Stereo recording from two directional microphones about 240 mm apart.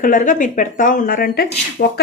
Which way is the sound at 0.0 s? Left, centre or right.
Left.